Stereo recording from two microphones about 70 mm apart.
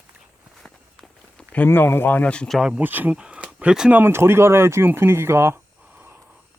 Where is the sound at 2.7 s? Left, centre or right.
Right.